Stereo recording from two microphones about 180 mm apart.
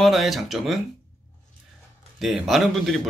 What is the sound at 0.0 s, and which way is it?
Speech, centre (ahead or behind).